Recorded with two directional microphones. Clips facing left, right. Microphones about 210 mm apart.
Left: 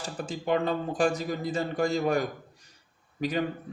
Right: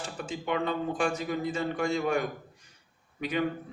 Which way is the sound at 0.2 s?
35° left (ahead or behind).